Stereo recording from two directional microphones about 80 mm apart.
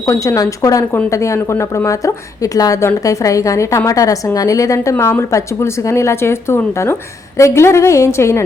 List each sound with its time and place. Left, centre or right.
0.1 s a woman's voice: left